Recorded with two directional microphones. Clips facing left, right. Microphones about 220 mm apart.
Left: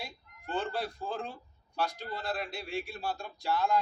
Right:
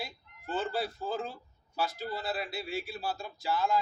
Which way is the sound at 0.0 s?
5° right (ahead or behind).